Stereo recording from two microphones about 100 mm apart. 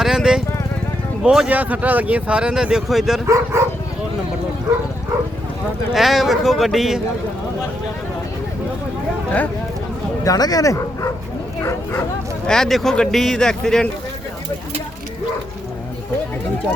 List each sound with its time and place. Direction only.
0.0 s vehicle: 5° right (ahead or behind)
1.2 s speech: 10° right (ahead or behind)
3.2 s speech: 30° right (ahead or behind)
5.9 s speech: centre (ahead or behind)
10.2 s speech: 40° left (ahead or behind)
12.5 s speech: 5° left (ahead or behind)